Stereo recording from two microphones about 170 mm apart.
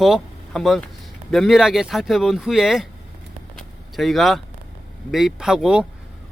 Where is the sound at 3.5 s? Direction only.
Centre (ahead or behind).